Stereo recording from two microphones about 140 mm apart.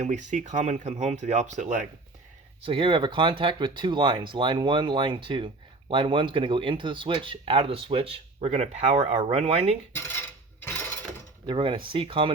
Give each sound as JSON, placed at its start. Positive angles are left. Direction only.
{"t": 0.0, "sound": "speech", "side_deg": -60}
{"t": 2.6, "sound": "speech", "side_deg": -40}
{"t": 11.4, "sound": "speech", "side_deg": -35}